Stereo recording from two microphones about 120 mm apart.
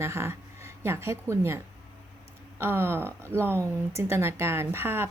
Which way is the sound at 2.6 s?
20° right (ahead or behind).